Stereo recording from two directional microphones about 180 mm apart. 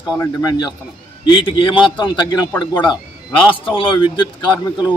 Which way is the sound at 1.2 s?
30° left (ahead or behind).